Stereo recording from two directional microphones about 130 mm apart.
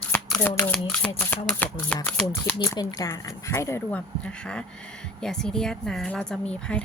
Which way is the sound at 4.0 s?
10° left (ahead or behind).